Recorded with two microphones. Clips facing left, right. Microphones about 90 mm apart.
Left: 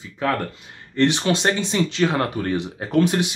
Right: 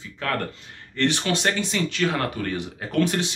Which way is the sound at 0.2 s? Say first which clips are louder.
Left 4 dB; 15° left (ahead or behind).